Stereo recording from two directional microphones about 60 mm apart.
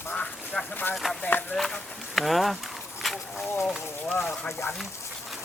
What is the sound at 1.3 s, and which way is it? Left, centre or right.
Speech, left.